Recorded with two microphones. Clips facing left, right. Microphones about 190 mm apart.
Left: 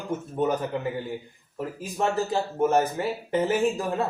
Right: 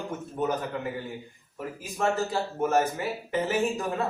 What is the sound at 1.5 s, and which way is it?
Speech, 25° left (ahead or behind).